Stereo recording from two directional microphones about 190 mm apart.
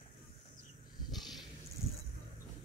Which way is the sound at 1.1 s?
Centre (ahead or behind).